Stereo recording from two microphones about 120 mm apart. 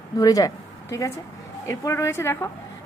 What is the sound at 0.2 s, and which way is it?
A woman's voice, 30° left (ahead or behind).